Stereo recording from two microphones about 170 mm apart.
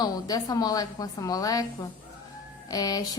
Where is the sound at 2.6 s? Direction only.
20° left (ahead or behind).